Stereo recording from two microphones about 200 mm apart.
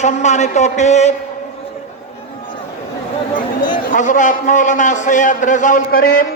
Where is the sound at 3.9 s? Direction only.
40° left (ahead or behind).